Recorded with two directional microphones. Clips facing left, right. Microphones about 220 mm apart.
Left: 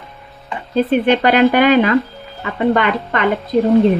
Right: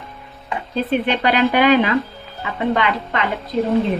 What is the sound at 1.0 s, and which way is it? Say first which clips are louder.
Speech: left 7 dB; 45° left (ahead or behind).